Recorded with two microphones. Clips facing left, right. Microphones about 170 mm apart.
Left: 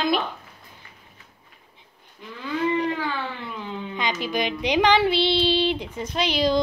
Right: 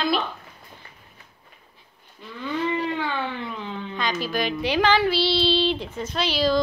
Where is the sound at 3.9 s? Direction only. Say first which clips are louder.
Even; 20° left (ahead or behind).